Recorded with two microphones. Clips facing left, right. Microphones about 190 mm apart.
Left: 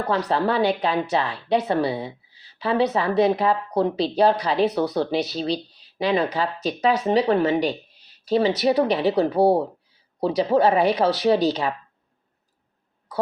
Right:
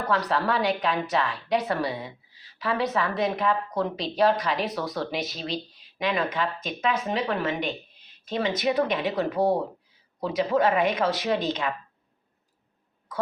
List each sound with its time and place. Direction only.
0.1 s a woman's voice: 30° left (ahead or behind)